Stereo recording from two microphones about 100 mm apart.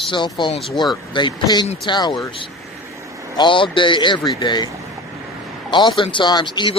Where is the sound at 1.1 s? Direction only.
50° left (ahead or behind).